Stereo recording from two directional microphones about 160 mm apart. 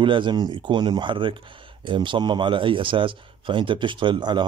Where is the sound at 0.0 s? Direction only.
30° right (ahead or behind).